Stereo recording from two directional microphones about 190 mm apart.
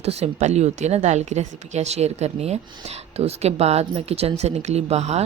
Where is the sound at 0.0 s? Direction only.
35° right (ahead or behind).